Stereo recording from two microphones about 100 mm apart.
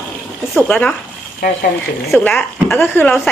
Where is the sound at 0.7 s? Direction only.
10° left (ahead or behind).